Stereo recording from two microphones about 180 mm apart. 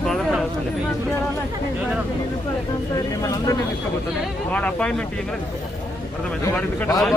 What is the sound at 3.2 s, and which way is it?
Speech, 20° left (ahead or behind).